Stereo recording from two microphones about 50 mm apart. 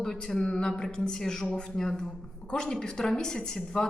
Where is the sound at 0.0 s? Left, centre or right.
Centre.